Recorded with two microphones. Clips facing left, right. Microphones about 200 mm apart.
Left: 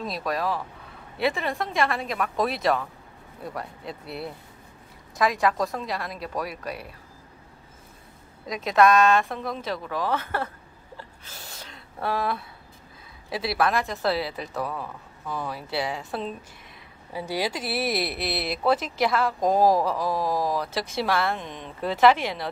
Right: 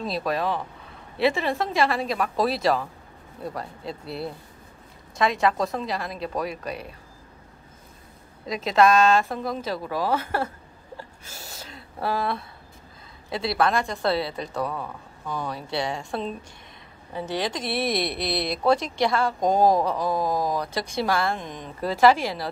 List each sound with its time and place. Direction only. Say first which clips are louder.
0.0 s speech: right 3 dB; 30° right (ahead or behind)
1.1 s speech: right 3 dB; centre (ahead or behind)
2.3 s speech: right 2 dB; 30° right (ahead or behind)
4.0 s speech: right 2 dB; 30° right (ahead or behind)
5.2 s speech: right 1 dB; centre (ahead or behind)
8.5 s a woman's voice: even; centre (ahead or behind)
11.6 s a sound: right 1 dB; 5° right (ahead or behind)
13.3 s speech: right 1 dB; 5° left (ahead or behind)